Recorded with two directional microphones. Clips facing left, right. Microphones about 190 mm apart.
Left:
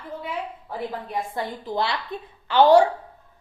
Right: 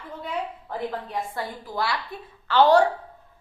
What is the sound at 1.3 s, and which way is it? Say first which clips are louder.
A woman's voice: left 3 dB; 20° left (ahead or behind).